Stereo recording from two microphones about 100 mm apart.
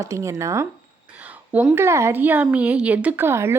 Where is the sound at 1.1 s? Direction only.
15° right (ahead or behind).